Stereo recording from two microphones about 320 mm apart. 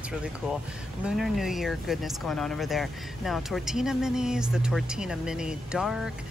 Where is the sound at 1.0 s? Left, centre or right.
Centre.